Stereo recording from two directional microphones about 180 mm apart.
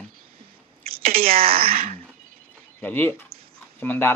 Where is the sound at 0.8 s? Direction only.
55° right (ahead or behind).